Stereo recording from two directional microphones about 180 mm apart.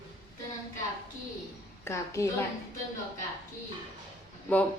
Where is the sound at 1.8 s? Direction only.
15° left (ahead or behind).